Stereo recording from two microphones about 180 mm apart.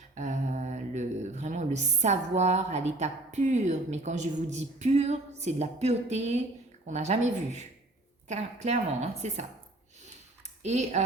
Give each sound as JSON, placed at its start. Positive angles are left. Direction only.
{"t": 0.1, "sound": "a woman's voice", "side_deg": -40}
{"t": 10.6, "sound": "speech", "side_deg": -40}